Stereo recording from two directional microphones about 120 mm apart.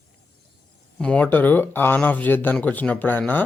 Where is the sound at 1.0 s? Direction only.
10° left (ahead or behind).